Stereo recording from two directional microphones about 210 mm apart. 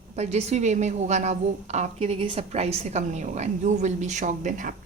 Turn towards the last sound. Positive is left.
turn(degrees=-35)  # may be behind; listen again after turning